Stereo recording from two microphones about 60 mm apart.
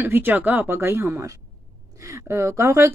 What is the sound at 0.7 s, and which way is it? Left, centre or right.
Speech, right.